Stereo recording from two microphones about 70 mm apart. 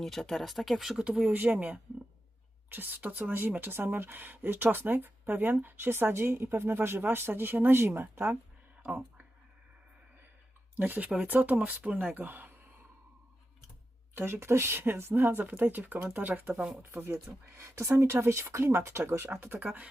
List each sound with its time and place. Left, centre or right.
0.0 s speech: centre; by 8.3 s right
10.8 s speech: right
14.2 s speech: right
16.8 s speech: right